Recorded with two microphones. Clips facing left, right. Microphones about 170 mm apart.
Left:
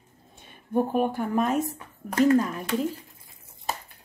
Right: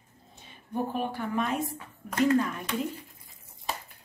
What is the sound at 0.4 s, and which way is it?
Speech, 50° left (ahead or behind).